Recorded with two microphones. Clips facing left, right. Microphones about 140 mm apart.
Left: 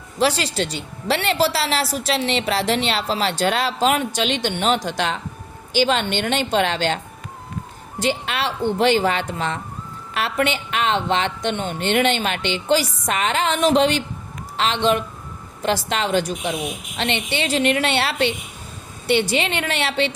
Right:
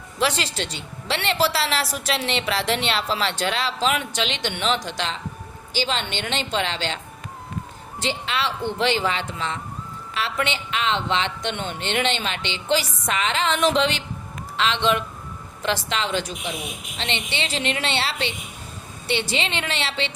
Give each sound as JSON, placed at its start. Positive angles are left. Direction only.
{"t": 0.2, "sound": "a woman's voice", "side_deg": 40}
{"t": 8.0, "sound": "a woman's voice", "side_deg": 50}